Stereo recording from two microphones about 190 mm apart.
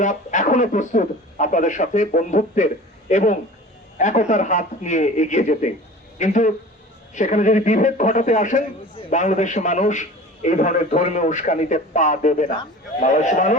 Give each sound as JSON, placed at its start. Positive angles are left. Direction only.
{"t": 0.0, "sound": "a man's voice", "side_deg": 40}